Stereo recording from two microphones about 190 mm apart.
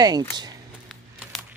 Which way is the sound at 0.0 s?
20° right (ahead or behind).